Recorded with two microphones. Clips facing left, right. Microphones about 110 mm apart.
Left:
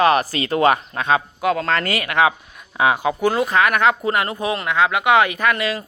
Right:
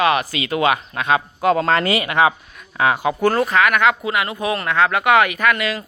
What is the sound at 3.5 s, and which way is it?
Speech, 35° left (ahead or behind).